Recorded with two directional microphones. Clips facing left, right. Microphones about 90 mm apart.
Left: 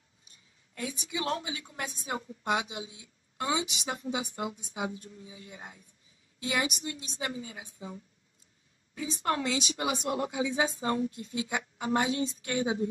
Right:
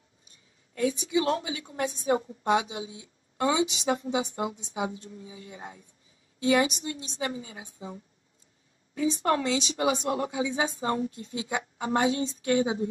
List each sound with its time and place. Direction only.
0.7 s a woman's voice: 30° right (ahead or behind)